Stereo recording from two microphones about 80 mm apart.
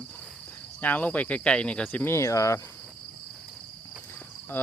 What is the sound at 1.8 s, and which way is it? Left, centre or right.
Speech, left.